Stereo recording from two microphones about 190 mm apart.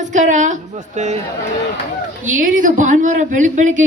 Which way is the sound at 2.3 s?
45° right (ahead or behind).